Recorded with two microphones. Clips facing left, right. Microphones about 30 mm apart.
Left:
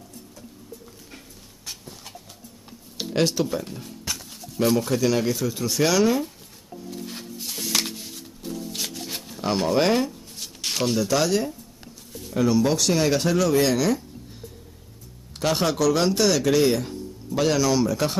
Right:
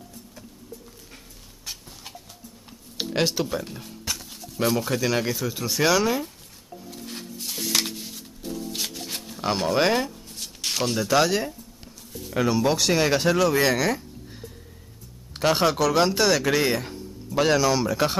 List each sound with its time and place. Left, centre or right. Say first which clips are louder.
3.0 s speech: left 2 dB; centre
6.9 s music: left 2 dB; centre
11.0 s speech: right 2 dB; centre
12.1 s a sound: right 1 dB; centre
12.4 s speech: left 1 dB; centre
15.3 s speech: right 2 dB; centre